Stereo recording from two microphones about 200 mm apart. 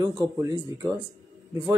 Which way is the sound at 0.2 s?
15° right (ahead or behind).